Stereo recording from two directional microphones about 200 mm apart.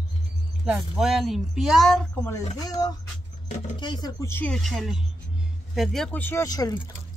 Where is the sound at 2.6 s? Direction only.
20° left (ahead or behind).